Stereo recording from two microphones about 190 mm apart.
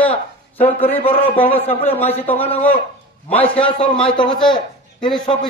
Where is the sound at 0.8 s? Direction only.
30° left (ahead or behind).